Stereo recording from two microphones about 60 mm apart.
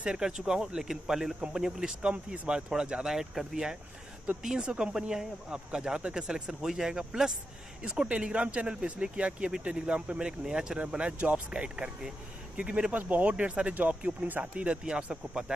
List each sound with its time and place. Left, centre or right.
0.0 s speech: centre
2.0 s speech: centre